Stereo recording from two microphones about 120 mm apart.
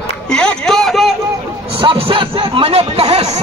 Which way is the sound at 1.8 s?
45° right (ahead or behind).